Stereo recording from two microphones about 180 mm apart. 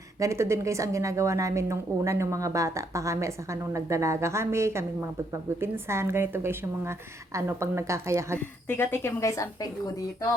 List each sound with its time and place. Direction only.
0.2 s a woman's voice: 15° right (ahead or behind)
8.6 s a woman's voice: 10° left (ahead or behind)